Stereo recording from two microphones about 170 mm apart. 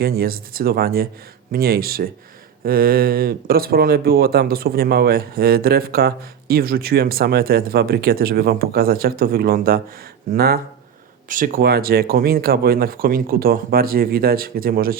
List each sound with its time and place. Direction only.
0.0 s speech: 65° right (ahead or behind)